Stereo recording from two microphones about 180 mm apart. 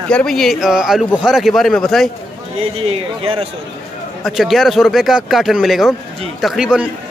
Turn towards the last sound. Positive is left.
turn(degrees=-5)  # may be behind; listen again after turning